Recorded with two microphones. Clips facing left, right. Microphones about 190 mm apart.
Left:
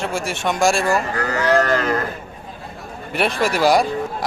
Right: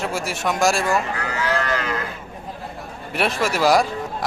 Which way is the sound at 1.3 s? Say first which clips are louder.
Left 6 dB; 40° left (ahead or behind).